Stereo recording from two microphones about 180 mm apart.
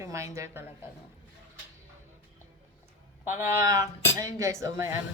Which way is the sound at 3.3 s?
15° right (ahead or behind).